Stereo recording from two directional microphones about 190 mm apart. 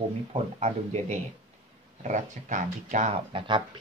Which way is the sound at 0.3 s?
35° right (ahead or behind).